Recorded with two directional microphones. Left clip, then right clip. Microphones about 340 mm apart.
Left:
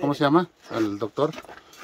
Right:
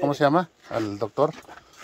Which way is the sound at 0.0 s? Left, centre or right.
Centre.